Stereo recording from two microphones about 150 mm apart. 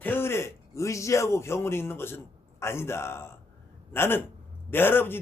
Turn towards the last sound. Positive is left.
turn(degrees=15)  # may be behind; listen again after turning